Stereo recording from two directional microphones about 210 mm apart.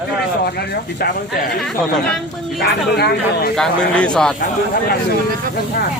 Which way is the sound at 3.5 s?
5° left (ahead or behind).